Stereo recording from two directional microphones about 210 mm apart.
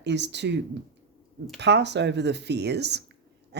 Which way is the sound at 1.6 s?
55° right (ahead or behind).